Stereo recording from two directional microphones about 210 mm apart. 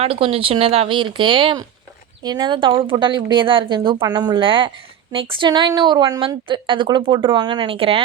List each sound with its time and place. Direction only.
0.0 s a woman's voice: 25° right (ahead or behind)